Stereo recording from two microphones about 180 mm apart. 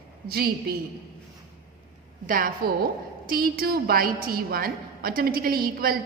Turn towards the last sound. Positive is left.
turn(degrees=-55)  # may be behind; listen again after turning